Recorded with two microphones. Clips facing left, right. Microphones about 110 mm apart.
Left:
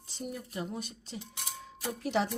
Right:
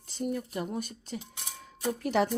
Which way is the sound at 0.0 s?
55° right (ahead or behind).